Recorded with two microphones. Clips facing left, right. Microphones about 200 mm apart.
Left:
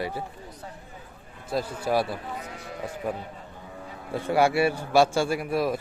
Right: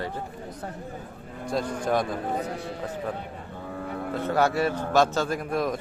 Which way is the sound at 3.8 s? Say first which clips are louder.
Right 9 dB; 60° right (ahead or behind).